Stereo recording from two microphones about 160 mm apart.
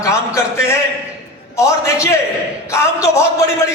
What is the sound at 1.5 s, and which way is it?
Music, 20° left (ahead or behind).